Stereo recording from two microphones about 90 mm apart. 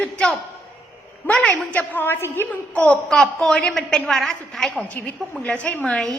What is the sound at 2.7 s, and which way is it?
A woman's voice, 10° left (ahead or behind).